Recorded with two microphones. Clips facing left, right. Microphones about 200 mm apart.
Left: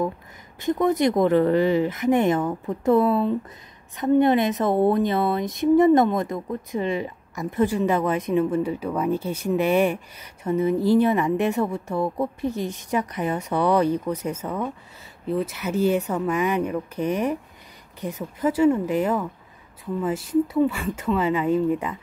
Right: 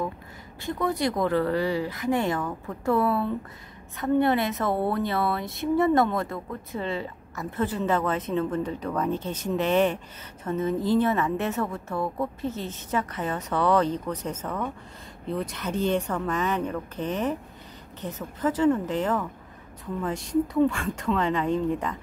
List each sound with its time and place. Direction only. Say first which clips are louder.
0.6 s a woman's voice: left 6 dB; 20° left (ahead or behind)